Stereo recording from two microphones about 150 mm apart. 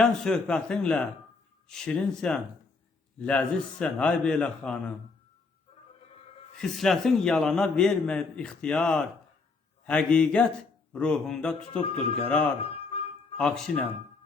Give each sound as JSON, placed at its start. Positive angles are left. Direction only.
{"t": 0.0, "sound": "a man's voice", "side_deg": 5}
{"t": 6.6, "sound": "a man's voice", "side_deg": 0}
{"t": 12.6, "sound": "a sound", "side_deg": 40}
{"t": 13.3, "sound": "speech", "side_deg": 10}